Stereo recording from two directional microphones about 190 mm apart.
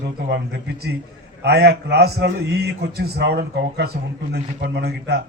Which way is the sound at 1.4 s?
60° right (ahead or behind).